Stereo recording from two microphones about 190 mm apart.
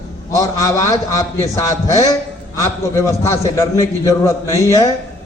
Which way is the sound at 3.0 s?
15° left (ahead or behind).